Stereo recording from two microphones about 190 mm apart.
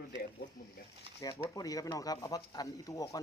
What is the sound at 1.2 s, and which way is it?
A man's voice, 20° left (ahead or behind).